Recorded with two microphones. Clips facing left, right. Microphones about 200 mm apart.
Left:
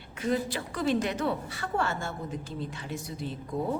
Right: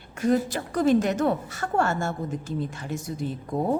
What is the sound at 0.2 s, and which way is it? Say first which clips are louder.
Speech: right 6 dB; 45° right (ahead or behind).